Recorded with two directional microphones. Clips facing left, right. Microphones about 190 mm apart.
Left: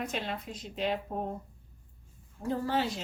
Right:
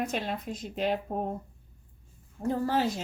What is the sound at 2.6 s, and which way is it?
Speech, 45° right (ahead or behind).